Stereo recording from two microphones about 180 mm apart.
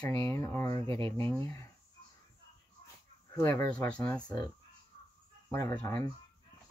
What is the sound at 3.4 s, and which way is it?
Speech, 15° left (ahead or behind).